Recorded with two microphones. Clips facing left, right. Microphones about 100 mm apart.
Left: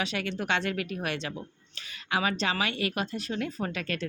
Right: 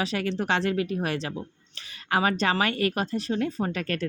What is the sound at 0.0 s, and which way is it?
Speech, 35° right (ahead or behind).